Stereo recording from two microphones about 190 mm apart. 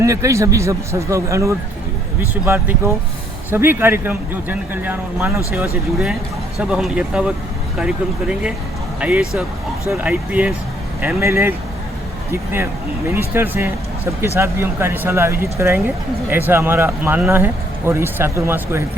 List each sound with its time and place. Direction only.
0.0 s speech: 15° right (ahead or behind)
6.6 s speech: 5° right (ahead or behind)
13.1 s speech: 10° right (ahead or behind)